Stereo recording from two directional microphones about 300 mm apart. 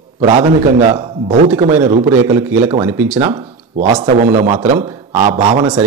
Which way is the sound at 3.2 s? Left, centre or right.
Centre.